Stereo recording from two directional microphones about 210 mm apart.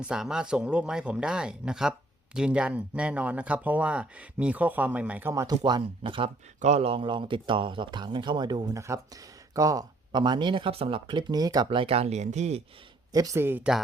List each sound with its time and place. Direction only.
0.0 s speech: 5° right (ahead or behind); by 12.6 s 30° right (ahead or behind)
13.1 s speech: 15° right (ahead or behind)